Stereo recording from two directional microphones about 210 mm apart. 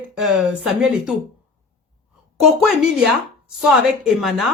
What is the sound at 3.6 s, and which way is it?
Speech, centre (ahead or behind).